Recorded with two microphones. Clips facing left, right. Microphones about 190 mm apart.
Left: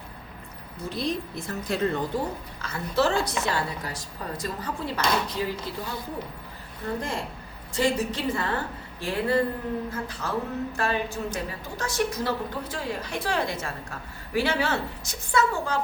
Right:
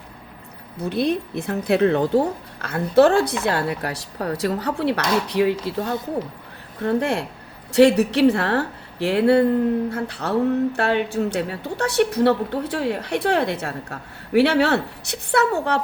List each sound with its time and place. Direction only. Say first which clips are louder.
0.8 s speech: right 8 dB; 60° right (ahead or behind)